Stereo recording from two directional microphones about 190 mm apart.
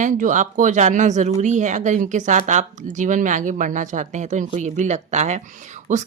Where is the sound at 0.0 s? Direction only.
45° right (ahead or behind).